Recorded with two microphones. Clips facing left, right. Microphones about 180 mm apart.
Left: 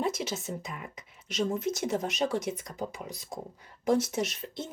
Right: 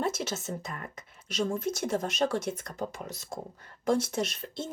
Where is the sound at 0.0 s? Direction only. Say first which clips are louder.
Even; 15° left (ahead or behind).